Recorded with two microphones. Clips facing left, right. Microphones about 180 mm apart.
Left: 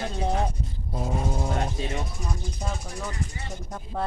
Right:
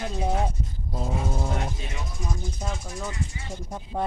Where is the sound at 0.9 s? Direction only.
10° left (ahead or behind).